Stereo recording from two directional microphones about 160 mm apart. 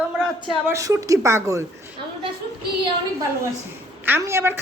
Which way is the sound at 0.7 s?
20° right (ahead or behind).